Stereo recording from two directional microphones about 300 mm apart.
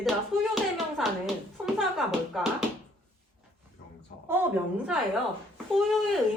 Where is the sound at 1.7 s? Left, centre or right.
Centre.